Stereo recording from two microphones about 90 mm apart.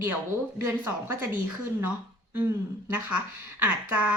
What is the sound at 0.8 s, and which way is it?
Speech, 25° right (ahead or behind).